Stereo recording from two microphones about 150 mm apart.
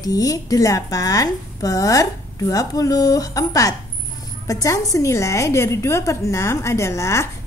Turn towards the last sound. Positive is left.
turn(degrees=20)  # may be behind; listen again after turning